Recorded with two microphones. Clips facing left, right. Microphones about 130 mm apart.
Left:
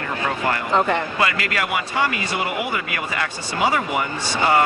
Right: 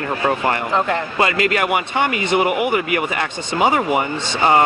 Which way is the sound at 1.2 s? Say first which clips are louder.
Right 5 dB; 25° right (ahead or behind).